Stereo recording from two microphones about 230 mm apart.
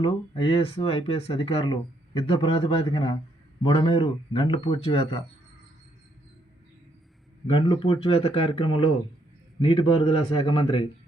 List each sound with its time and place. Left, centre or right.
0.0 s speech: left
7.5 s speech: left